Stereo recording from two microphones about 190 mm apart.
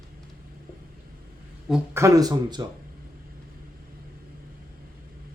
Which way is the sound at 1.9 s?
15° right (ahead or behind).